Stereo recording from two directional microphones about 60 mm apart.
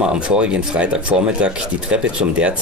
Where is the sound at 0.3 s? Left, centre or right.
Centre.